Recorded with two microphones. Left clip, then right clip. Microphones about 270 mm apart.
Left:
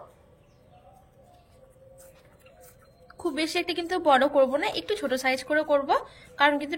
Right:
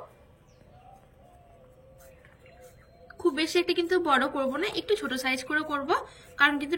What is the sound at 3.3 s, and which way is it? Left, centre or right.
A woman's voice, centre.